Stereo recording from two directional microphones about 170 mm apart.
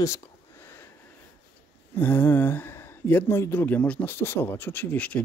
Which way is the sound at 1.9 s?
10° left (ahead or behind).